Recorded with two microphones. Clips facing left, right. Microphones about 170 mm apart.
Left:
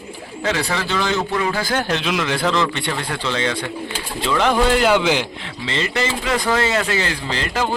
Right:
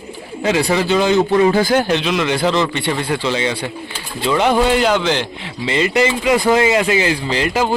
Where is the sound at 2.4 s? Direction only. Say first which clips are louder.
Right 2 dB; 30° right (ahead or behind).